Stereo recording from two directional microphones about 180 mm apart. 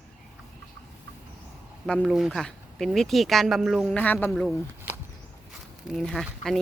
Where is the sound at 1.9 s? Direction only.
Centre (ahead or behind).